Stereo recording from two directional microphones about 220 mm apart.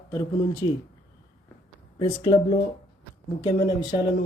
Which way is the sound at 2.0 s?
20° left (ahead or behind).